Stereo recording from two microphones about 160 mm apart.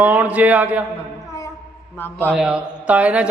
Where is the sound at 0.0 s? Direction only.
10° right (ahead or behind).